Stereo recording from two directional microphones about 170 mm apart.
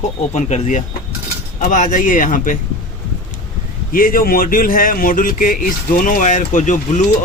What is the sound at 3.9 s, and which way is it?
Speech, 60° left (ahead or behind).